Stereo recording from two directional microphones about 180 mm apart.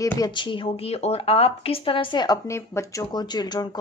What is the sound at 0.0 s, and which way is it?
A woman's voice, 20° left (ahead or behind).